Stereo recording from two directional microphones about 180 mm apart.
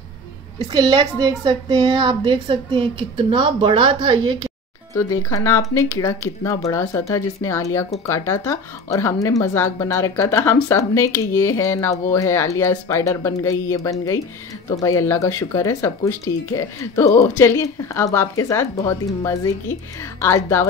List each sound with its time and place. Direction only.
0.6 s a woman's voice: 25° right (ahead or behind)
4.9 s speech: 15° left (ahead or behind)